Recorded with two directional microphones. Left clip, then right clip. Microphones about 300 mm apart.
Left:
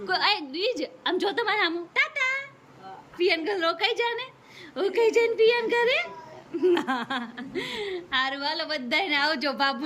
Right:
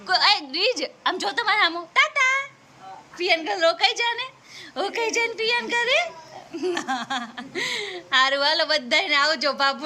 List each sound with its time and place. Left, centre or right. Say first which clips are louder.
0.0 s a woman's voice: right 5 dB; centre